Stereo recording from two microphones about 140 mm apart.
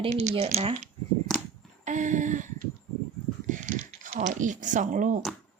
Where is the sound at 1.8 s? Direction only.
60° right (ahead or behind).